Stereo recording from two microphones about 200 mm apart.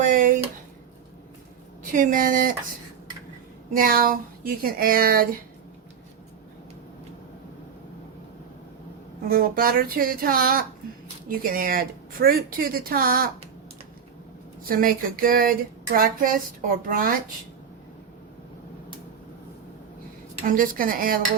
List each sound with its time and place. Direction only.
0.0 s a sound: 40° right (ahead or behind)
1.9 s speech: 40° right (ahead or behind)
3.8 s speech: 45° right (ahead or behind)
9.3 s speech: 45° right (ahead or behind)
14.7 s speech: 45° right (ahead or behind)
20.5 s speech: 45° right (ahead or behind)